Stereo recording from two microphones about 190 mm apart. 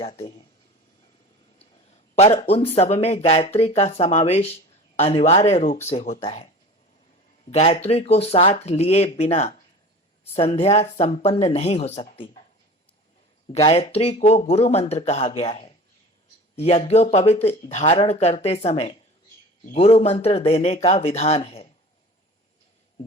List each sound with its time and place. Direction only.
0.0 s speech: 25° left (ahead or behind)
1.5 s a sound: 35° left (ahead or behind)
2.7 s speech: 35° left (ahead or behind)
7.5 s speech: 30° left (ahead or behind)
13.5 s speech: 30° left (ahead or behind)